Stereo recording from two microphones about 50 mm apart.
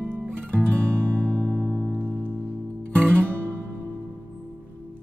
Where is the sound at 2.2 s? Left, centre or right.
Right.